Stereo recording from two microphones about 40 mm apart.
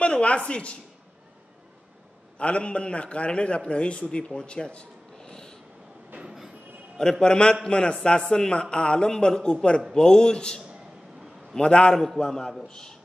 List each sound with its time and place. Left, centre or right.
0.0 s a woman's voice: left
2.3 s speech: left
6.2 s train: centre
7.0 s speech: centre
12.2 s a man's voice: centre